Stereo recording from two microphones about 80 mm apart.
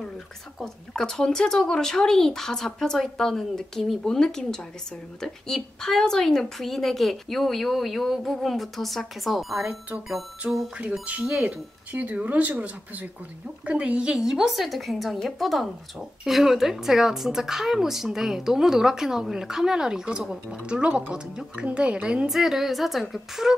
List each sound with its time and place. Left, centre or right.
0.6 s a woman's voice: centre
9.7 s a woman's voice: centre